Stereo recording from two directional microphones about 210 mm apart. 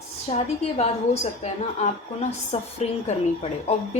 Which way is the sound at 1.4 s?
30° left (ahead or behind).